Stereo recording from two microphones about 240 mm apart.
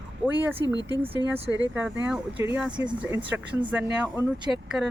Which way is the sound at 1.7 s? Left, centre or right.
Centre.